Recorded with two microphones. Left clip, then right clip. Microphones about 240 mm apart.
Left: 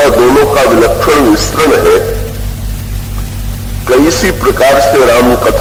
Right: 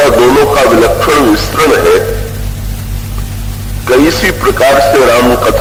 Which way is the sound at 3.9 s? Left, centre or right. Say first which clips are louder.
Even; left.